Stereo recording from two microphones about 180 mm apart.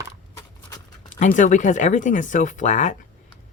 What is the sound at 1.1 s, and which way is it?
Speech, 45° left (ahead or behind).